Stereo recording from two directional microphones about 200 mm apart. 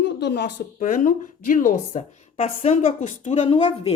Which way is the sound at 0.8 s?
40° left (ahead or behind).